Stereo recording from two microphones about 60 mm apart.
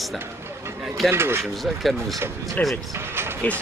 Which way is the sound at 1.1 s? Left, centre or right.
Right.